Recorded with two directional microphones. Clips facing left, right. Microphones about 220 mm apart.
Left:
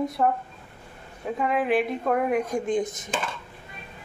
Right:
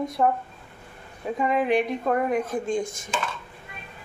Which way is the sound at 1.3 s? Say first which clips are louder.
Right 1 dB; centre (ahead or behind).